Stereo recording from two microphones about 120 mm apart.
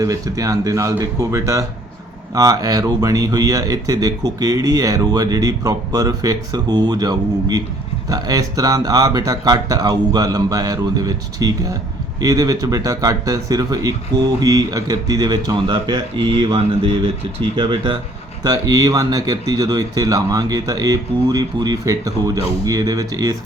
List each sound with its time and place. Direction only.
0.0 s speech: 30° right (ahead or behind)
18.4 s speech: 30° right (ahead or behind)